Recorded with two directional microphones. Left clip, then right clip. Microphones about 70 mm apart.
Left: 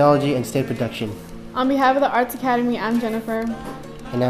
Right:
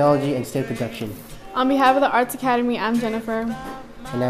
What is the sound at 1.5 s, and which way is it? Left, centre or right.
A woman's voice, right.